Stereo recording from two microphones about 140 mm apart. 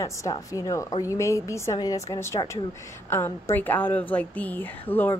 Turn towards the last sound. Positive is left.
turn(degrees=15)  # may be behind; listen again after turning